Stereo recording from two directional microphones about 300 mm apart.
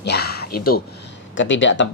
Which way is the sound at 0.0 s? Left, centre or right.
Left.